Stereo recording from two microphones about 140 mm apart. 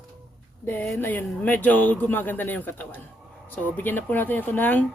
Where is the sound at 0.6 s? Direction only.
15° left (ahead or behind).